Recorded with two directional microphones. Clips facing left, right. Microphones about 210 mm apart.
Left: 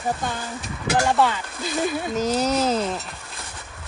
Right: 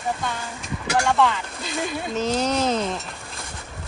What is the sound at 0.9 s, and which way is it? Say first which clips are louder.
Speech: even; 5° left (ahead or behind).